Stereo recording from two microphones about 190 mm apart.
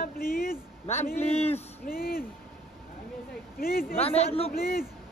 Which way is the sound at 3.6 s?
50° left (ahead or behind).